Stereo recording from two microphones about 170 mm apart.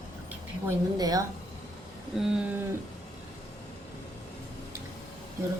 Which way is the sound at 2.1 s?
5° right (ahead or behind).